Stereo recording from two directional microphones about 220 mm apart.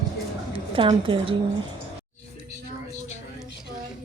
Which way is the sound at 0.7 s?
25° right (ahead or behind).